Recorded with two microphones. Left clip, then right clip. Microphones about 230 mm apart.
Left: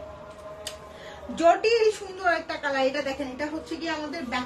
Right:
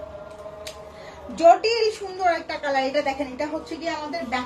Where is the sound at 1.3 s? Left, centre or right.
Centre.